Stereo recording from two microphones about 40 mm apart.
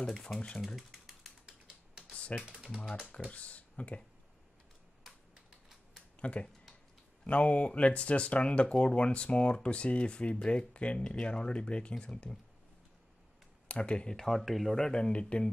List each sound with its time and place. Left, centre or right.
0.1 s speech: centre
0.7 s typing: centre
2.1 s typing: left
2.6 s speech: centre
3.3 s speech: left
6.3 s speech: left
13.7 s speech: left
14.1 s speech: centre
14.8 s speech: left